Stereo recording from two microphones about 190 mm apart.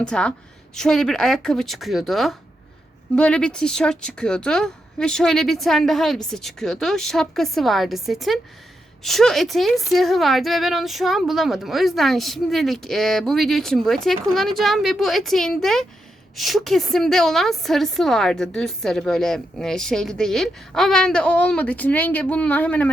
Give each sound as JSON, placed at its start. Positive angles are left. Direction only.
{"t": 0.0, "sound": "a woman's voice", "side_deg": 5}